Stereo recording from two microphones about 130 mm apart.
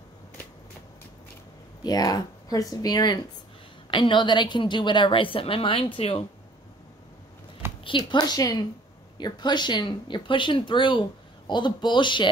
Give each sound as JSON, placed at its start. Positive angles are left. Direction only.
{"t": 1.8, "sound": "speech", "side_deg": 30}
{"t": 7.8, "sound": "speech", "side_deg": 40}